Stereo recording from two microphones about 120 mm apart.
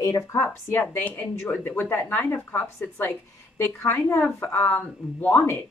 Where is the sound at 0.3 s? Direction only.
20° left (ahead or behind).